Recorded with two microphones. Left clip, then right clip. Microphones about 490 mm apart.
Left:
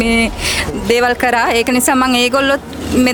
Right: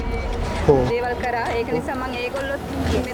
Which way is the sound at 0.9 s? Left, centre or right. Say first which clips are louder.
Left 10 dB; left.